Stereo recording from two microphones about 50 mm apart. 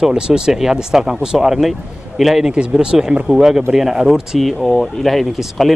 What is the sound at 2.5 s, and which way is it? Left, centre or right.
A man's voice, centre.